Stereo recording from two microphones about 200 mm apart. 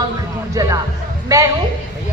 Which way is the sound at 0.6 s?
15° right (ahead or behind).